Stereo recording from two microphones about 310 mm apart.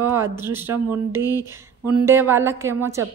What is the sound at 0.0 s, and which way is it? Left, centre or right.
A woman's voice, centre.